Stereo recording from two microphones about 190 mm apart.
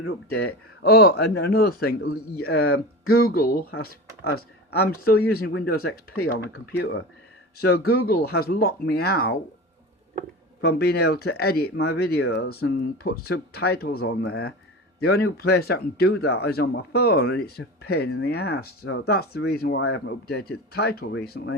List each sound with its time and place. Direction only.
0.0 s speech: 55° left (ahead or behind)
2.6 s speech: 90° left
3.2 s speech: 50° left (ahead or behind); by 7.0 s 70° left (ahead or behind)
7.6 s speech: 60° left (ahead or behind)
10.6 s speech: 60° left (ahead or behind)